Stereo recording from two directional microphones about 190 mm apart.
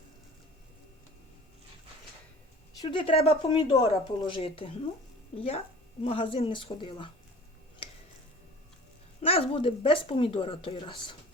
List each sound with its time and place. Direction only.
2.8 s speech: 25° left (ahead or behind)
9.2 s speech: 30° left (ahead or behind)